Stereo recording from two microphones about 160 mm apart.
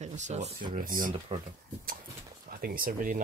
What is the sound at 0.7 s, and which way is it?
Speech, 60° right (ahead or behind).